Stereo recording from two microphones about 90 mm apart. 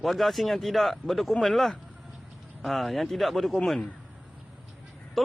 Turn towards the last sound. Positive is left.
turn(degrees=0)  # may be behind; listen again after turning